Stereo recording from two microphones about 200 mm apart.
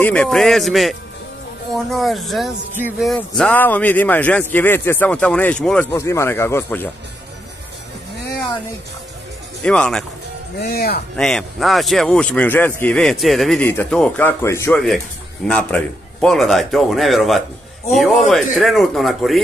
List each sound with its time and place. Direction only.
0.0 s speech: 5° left (ahead or behind)
9.6 s speech: 5° left (ahead or behind)
10.6 s speech: 50° left (ahead or behind)
11.1 s speech: centre (ahead or behind)